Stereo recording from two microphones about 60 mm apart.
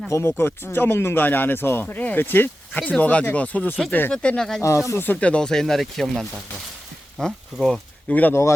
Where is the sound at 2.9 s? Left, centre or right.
Left.